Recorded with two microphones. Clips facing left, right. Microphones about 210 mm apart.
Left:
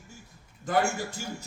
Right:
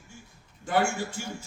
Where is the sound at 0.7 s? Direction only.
40° left (ahead or behind).